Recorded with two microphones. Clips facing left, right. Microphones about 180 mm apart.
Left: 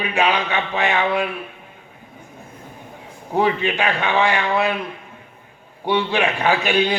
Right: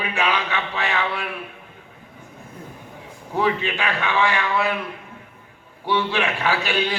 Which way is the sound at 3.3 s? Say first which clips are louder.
Left 3 dB; 20° left (ahead or behind).